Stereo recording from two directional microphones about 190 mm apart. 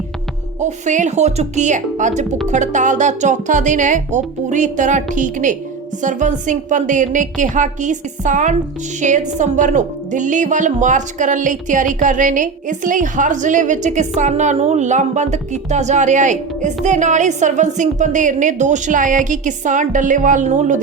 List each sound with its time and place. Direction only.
0.6 s speech: 40° right (ahead or behind)